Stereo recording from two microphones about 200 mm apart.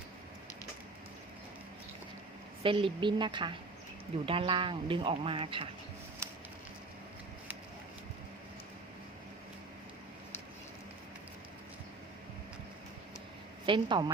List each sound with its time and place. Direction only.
2.6 s speech: 25° right (ahead or behind)
13.7 s speech: 25° right (ahead or behind)